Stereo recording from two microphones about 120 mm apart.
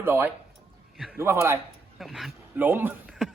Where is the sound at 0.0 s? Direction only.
15° right (ahead or behind).